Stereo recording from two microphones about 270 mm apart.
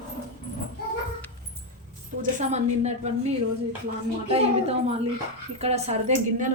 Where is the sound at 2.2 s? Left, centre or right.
Right.